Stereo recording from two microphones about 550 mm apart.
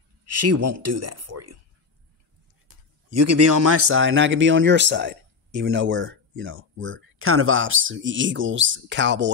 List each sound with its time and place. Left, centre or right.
0.2 s a man's voice: right
3.1 s a man's voice: right